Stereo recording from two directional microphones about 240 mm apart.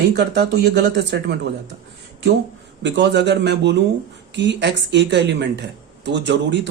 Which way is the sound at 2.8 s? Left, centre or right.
Right.